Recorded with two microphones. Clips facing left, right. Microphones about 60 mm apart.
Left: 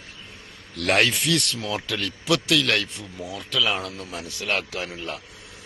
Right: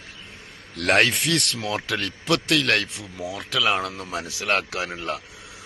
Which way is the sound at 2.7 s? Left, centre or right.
Right.